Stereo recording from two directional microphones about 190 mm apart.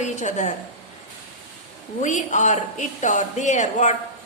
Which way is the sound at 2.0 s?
40° left (ahead or behind).